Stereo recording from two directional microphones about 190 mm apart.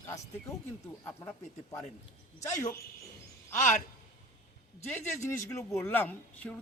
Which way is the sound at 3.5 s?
40° left (ahead or behind).